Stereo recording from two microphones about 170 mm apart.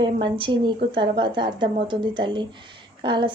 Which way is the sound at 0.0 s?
30° right (ahead or behind).